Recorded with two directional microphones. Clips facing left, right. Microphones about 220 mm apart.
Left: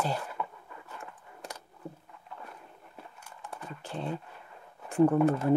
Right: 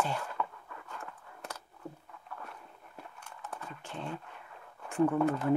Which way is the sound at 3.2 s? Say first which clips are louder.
Even; 10° left (ahead or behind).